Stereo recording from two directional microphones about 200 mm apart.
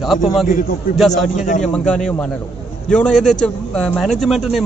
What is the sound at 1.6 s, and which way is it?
A man's voice, 5° left (ahead or behind).